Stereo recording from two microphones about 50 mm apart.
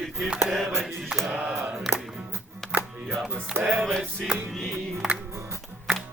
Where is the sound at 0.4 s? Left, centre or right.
Centre.